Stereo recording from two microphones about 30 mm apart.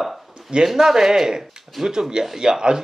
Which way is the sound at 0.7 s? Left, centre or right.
Centre.